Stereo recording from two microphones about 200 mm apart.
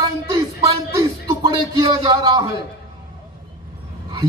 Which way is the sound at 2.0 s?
20° right (ahead or behind).